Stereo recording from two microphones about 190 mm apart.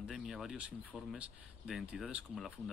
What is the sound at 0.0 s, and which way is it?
Speech, centre (ahead or behind).